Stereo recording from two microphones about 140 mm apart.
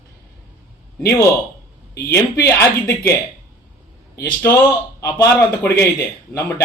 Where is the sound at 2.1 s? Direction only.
20° left (ahead or behind).